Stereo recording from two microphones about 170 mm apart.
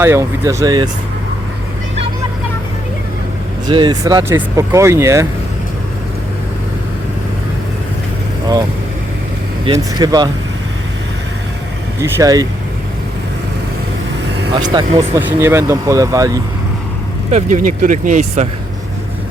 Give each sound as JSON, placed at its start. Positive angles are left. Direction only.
{"t": 0.0, "sound": "speech", "side_deg": -15}
{"t": 3.7, "sound": "speech", "side_deg": -25}
{"t": 9.7, "sound": "speech", "side_deg": -25}
{"t": 11.9, "sound": "speech", "side_deg": -20}
{"t": 14.5, "sound": "speech", "side_deg": -25}
{"t": 17.3, "sound": "speech", "side_deg": -50}